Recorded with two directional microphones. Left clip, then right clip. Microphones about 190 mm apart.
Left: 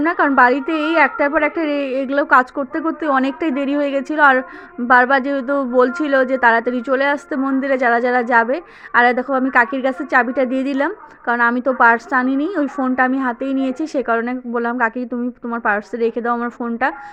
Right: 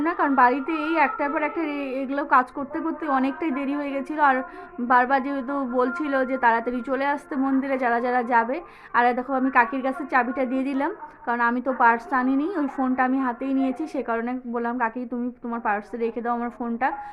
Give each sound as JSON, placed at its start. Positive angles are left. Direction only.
{"t": 0.0, "sound": "a woman's voice", "side_deg": 30}